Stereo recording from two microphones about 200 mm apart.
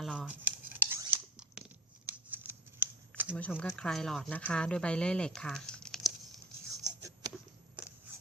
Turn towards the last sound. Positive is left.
turn(degrees=-5)  # may be behind; listen again after turning